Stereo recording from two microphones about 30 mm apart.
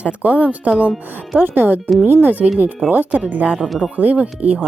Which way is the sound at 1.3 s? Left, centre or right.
Right.